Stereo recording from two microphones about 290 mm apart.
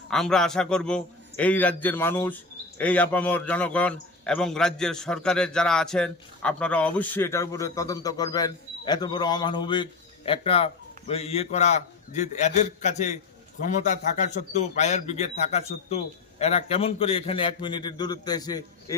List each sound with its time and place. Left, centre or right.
0.1 s a man's voice: centre